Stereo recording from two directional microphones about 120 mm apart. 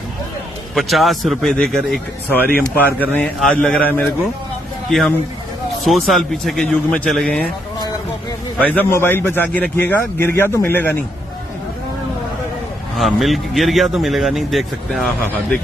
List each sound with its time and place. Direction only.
0.8 s speech: centre (ahead or behind)
2.3 s a man's voice: 15° left (ahead or behind)
8.5 s a man's voice: 15° left (ahead or behind)
13.0 s speech: centre (ahead or behind)